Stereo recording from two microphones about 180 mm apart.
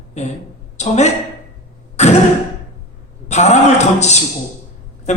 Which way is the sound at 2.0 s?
40° left (ahead or behind).